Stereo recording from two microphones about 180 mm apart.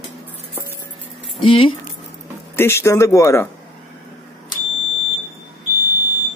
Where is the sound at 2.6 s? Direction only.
15° left (ahead or behind).